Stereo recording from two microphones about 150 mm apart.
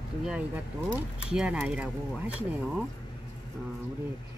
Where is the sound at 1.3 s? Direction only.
10° right (ahead or behind).